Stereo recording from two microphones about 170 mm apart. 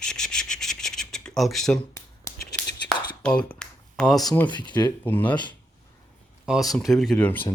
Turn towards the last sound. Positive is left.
turn(degrees=10)  # may be behind; listen again after turning